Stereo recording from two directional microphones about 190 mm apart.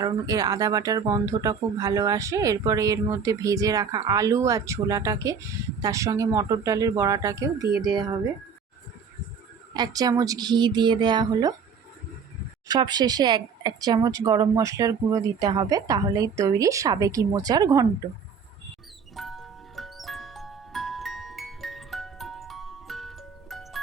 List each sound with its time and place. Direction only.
0.0 s speech: 20° right (ahead or behind)
9.7 s speech: 20° right (ahead or behind)
12.6 s speech: 20° right (ahead or behind)
19.1 s music: centre (ahead or behind)